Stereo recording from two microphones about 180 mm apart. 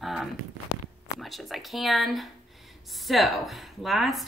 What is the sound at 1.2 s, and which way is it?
Speech, centre (ahead or behind).